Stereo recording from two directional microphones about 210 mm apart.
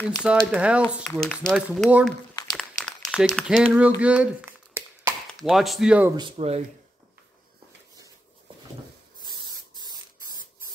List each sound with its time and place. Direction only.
0.2 s speech: 5° right (ahead or behind)
2.5 s a sound: centre (ahead or behind)
4.0 s cough: 5° right (ahead or behind)
5.4 s speech: centre (ahead or behind)
6.1 s speech: 25° right (ahead or behind)
9.2 s spray: 20° right (ahead or behind)